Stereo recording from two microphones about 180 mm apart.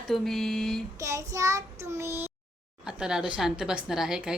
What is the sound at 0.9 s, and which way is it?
Child singing, 15° right (ahead or behind).